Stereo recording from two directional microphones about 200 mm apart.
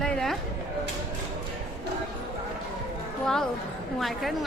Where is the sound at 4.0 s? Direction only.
Centre (ahead or behind).